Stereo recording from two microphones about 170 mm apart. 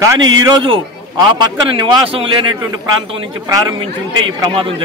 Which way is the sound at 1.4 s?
30° right (ahead or behind).